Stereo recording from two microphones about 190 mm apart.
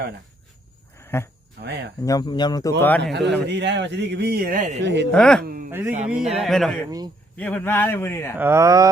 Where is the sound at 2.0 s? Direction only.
20° left (ahead or behind).